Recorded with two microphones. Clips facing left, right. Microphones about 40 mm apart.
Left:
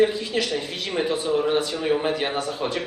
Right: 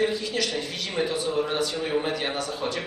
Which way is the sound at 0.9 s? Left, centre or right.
Centre.